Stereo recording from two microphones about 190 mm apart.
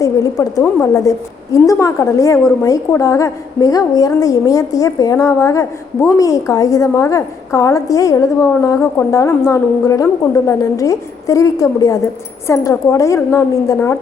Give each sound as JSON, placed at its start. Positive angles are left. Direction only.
{"t": 0.0, "sound": "a woman's voice", "side_deg": 20}